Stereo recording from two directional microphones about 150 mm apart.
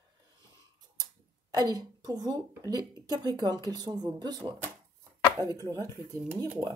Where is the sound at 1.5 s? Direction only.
25° right (ahead or behind).